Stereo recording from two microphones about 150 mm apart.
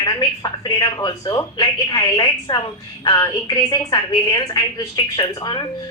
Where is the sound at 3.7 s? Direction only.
25° left (ahead or behind).